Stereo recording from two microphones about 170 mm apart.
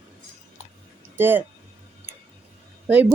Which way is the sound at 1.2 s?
10° right (ahead or behind).